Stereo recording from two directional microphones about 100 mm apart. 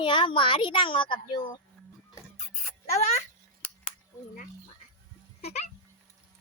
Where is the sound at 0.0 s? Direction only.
55° left (ahead or behind).